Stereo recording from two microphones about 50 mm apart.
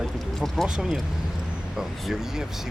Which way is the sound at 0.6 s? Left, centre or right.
Centre.